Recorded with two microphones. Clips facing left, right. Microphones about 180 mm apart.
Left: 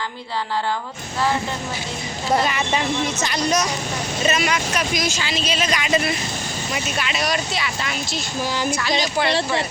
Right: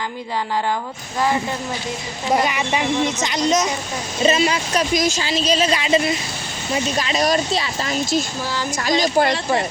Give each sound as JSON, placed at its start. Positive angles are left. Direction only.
{"t": 2.3, "sound": "speech", "side_deg": -15}